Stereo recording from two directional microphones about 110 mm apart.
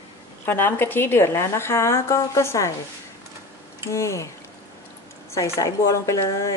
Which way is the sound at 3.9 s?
25° left (ahead or behind).